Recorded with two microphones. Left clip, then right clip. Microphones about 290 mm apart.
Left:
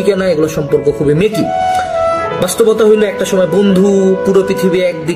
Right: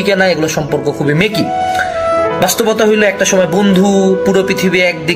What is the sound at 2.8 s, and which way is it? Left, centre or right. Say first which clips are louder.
A man's voice: even; centre.